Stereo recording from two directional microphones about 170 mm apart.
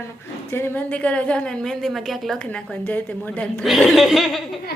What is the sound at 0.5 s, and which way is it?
A woman's voice, 15° left (ahead or behind).